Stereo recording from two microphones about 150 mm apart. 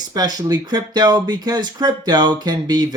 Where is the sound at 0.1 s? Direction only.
25° right (ahead or behind).